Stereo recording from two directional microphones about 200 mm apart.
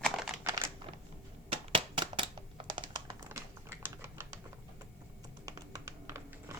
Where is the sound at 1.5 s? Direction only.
25° right (ahead or behind).